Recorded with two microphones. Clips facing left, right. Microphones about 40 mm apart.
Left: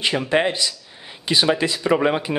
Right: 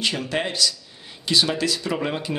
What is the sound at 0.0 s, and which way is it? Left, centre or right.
Speech, left.